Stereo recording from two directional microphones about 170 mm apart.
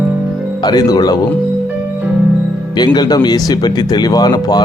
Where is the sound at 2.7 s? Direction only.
25° left (ahead or behind).